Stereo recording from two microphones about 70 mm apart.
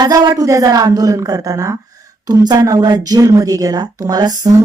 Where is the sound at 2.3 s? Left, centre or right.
Right.